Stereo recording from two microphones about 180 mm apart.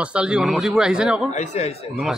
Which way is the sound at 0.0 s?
5° right (ahead or behind).